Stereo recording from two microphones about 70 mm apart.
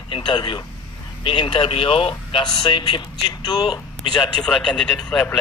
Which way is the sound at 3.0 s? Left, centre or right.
Left.